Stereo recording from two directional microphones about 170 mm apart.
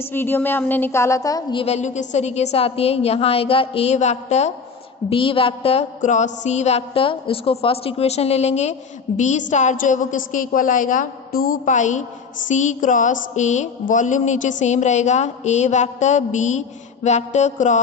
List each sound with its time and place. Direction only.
0.0 s a woman's voice: 10° left (ahead or behind)
1.6 s mantra: 40° left (ahead or behind)
9.5 s a sound: 45° left (ahead or behind)